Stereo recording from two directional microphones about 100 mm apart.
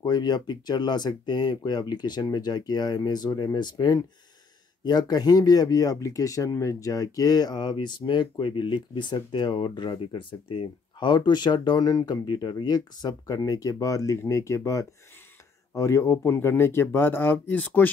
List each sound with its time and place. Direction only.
0.0 s speech: 45° left (ahead or behind); by 17.9 s 15° left (ahead or behind)